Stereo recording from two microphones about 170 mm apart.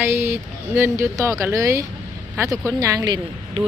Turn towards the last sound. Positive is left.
turn(degrees=-25)  # may be behind; listen again after turning